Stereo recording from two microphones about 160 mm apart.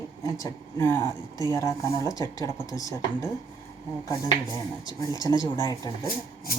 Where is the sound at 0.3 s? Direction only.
20° left (ahead or behind).